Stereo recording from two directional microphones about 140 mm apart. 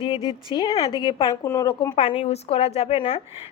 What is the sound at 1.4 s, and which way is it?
A woman's voice, 25° left (ahead or behind).